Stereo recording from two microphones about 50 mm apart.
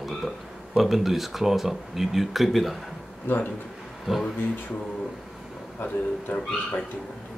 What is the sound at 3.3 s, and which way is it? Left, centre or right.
Speech, left.